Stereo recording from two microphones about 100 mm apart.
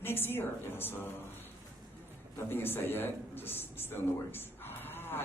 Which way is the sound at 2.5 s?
20° left (ahead or behind).